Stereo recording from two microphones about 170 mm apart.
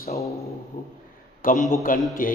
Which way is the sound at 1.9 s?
55° left (ahead or behind).